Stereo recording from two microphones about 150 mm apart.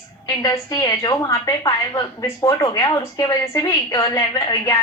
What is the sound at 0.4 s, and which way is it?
A woman's voice, 25° left (ahead or behind).